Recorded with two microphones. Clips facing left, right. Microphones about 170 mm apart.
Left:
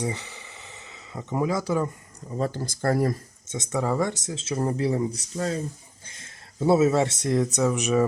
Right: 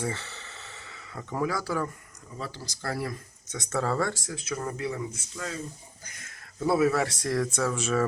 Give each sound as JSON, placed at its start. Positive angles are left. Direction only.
{"t": 0.0, "sound": "a sound", "side_deg": 15}
{"t": 2.3, "sound": "speech", "side_deg": 45}
{"t": 3.5, "sound": "speech", "side_deg": 20}
{"t": 6.1, "sound": "speech", "side_deg": 25}